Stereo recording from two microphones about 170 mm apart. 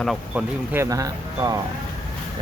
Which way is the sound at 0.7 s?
15° right (ahead or behind).